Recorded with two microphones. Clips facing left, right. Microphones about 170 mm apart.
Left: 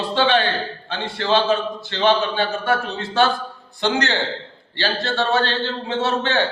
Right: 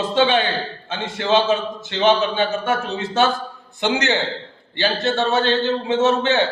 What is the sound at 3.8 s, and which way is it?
A man's voice, 15° right (ahead or behind).